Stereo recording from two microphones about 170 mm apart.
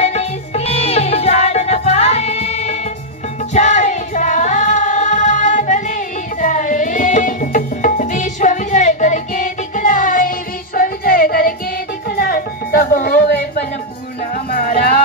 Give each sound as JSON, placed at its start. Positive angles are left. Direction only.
{"t": 0.0, "sound": "music", "side_deg": 40}
{"t": 14.3, "sound": "music", "side_deg": 60}